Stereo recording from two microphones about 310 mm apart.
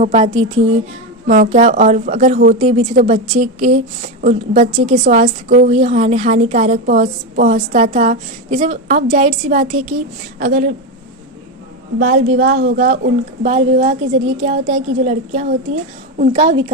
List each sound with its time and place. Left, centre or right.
0.0 s a woman's voice: centre
11.9 s a woman's voice: right